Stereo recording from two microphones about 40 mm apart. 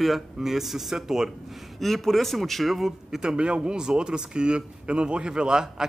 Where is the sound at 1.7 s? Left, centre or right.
Centre.